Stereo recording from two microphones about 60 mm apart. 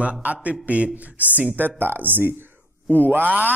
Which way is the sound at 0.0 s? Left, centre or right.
Right.